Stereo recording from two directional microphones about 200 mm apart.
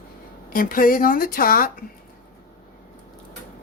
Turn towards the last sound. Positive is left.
turn(degrees=45)  # may be behind; listen again after turning